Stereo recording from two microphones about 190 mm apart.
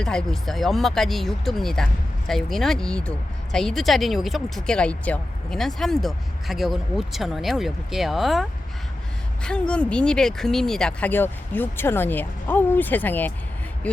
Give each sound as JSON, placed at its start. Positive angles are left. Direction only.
{"t": 0.0, "sound": "speech", "side_deg": 5}